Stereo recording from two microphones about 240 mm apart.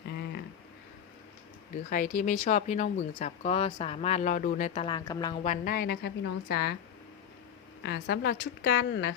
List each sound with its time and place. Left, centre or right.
1.9 s speech: left; by 5.4 s centre
5.4 s a woman's voice: left
7.9 s a woman's voice: left